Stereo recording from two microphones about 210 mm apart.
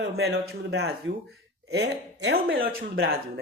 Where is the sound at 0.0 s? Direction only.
50° right (ahead or behind).